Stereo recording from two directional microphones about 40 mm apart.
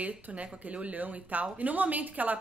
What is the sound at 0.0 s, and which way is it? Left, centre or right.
Speech, right.